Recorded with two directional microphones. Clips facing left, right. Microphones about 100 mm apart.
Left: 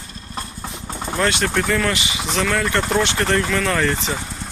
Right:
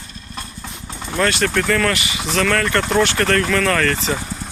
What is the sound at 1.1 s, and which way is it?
Speech, 20° left (ahead or behind).